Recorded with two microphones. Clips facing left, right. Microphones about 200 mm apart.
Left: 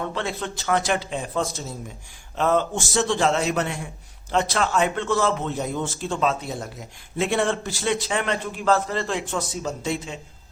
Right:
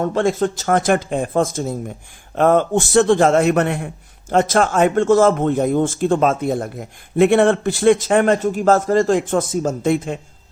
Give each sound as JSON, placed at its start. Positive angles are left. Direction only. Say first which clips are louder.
{"t": 0.0, "sound": "a man's voice", "louder": "right 11 dB", "side_deg": -45}